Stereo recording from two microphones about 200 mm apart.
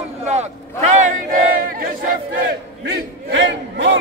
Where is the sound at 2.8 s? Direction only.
60° right (ahead or behind).